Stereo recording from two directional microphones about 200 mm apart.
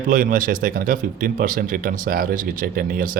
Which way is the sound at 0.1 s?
45° right (ahead or behind).